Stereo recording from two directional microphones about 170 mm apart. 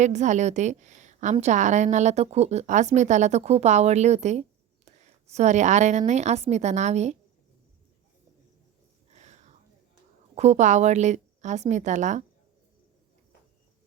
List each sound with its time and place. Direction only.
0.0 s a woman's voice: 45° right (ahead or behind)
9.0 s whispering: 40° right (ahead or behind)
10.3 s a woman's voice: 40° right (ahead or behind)